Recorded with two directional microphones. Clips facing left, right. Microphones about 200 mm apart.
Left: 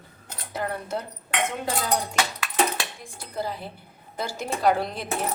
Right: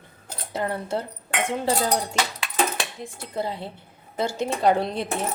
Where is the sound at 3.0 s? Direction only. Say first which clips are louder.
Right 3 dB; 25° right (ahead or behind).